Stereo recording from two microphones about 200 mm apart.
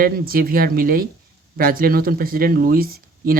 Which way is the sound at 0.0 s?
45° right (ahead or behind).